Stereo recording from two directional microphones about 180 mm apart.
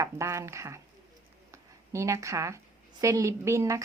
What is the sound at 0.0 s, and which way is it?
Speech, 15° right (ahead or behind).